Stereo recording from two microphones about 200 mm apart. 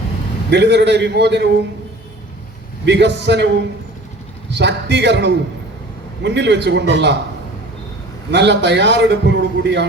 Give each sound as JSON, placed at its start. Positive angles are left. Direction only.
{"t": 0.5, "sound": "a man's voice", "side_deg": -60}
{"t": 2.8, "sound": "a man's voice", "side_deg": -60}
{"t": 8.3, "sound": "a man's voice", "side_deg": -60}